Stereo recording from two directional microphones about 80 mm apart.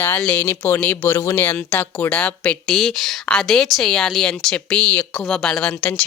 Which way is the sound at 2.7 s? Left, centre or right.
Centre.